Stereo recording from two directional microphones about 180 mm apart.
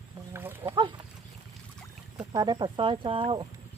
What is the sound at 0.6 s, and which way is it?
Speech, 25° right (ahead or behind).